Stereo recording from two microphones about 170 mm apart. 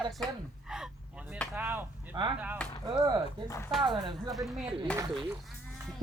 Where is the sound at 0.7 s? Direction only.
5° right (ahead or behind).